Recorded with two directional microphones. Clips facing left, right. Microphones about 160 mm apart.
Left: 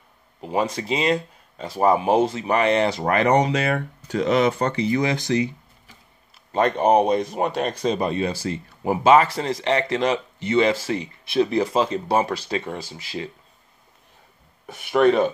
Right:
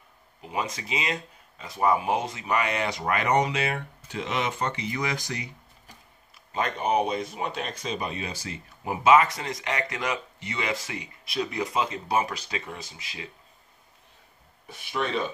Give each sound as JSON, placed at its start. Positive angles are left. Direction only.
{"t": 0.4, "sound": "speech", "side_deg": 35}
{"t": 6.5, "sound": "speech", "side_deg": 40}
{"t": 14.8, "sound": "speech", "side_deg": 60}